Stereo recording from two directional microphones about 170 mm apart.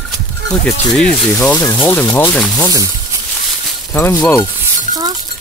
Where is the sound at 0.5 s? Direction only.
5° left (ahead or behind).